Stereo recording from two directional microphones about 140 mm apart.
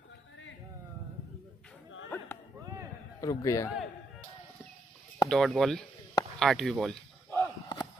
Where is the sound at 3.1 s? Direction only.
25° left (ahead or behind).